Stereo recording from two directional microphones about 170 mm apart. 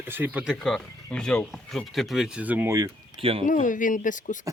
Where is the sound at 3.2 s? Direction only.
35° right (ahead or behind).